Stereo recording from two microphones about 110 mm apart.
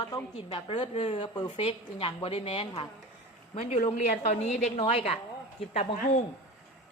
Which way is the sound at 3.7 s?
80° left.